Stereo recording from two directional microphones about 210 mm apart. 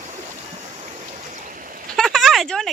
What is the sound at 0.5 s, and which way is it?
Waves, 30° right (ahead or behind).